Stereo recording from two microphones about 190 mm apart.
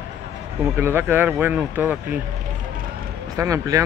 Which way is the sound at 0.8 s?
10° right (ahead or behind).